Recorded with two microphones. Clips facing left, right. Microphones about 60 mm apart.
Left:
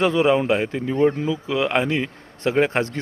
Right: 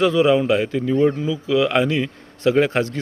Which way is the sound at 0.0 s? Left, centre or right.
Left.